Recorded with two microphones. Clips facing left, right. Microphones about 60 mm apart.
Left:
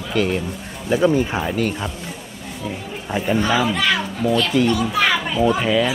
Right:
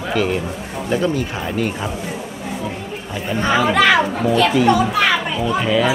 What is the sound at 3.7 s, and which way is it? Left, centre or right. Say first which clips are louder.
Speech: right 7 dB; right.